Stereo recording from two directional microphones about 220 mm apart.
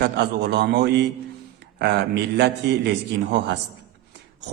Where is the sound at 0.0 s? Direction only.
50° right (ahead or behind).